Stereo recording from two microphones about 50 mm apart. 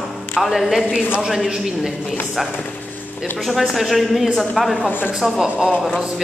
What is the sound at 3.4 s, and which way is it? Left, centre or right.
A man's voice, centre.